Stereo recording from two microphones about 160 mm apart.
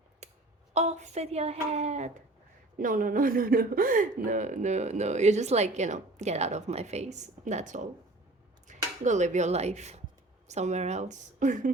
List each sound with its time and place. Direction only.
0.2 s a sound: 45° right (ahead or behind)
0.7 s speech: 45° right (ahead or behind)
2.7 s speech: 60° right (ahead or behind)